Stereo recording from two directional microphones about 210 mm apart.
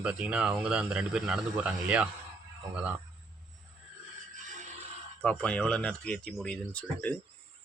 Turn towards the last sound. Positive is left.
turn(degrees=5)  # may be behind; listen again after turning